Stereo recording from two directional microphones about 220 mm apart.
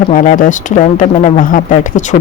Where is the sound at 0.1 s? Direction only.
35° left (ahead or behind).